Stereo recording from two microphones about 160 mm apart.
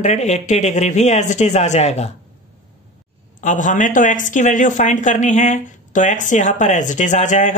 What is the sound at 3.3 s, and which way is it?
Speech, 50° left (ahead or behind).